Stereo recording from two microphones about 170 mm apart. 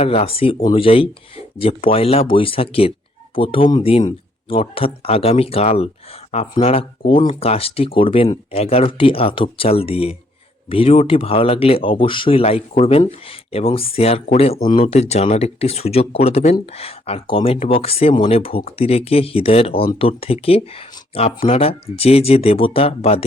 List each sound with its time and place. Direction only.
0.0 s speech: 35° left (ahead or behind)